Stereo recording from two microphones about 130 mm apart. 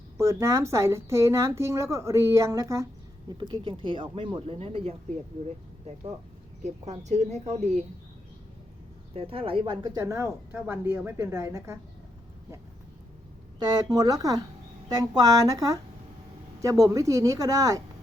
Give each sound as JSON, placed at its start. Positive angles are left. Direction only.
{"t": 0.2, "sound": "a woman's voice", "side_deg": -20}
{"t": 3.2, "sound": "speech", "side_deg": -35}
{"t": 6.6, "sound": "speech", "side_deg": -60}
{"t": 9.1, "sound": "speech", "side_deg": -45}
{"t": 9.8, "sound": "a woman's voice", "side_deg": -25}
{"t": 13.6, "sound": "a woman's voice", "side_deg": -30}